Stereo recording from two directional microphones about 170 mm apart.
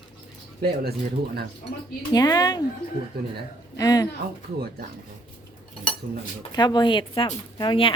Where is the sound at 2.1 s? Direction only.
20° left (ahead or behind).